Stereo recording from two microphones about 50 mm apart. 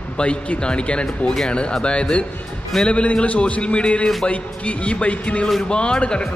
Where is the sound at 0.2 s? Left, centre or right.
Left.